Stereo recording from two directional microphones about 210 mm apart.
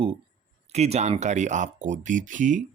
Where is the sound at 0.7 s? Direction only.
30° right (ahead or behind).